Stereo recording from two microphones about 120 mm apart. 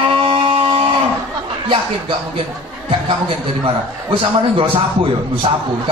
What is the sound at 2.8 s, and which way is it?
A man's voice, 50° right (ahead or behind).